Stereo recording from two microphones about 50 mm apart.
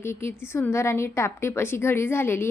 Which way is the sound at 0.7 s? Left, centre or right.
Left.